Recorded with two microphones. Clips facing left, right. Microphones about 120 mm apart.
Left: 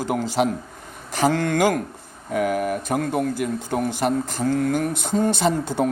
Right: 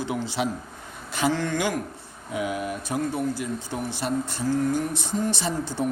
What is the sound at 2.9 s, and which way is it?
Speech, 80° left.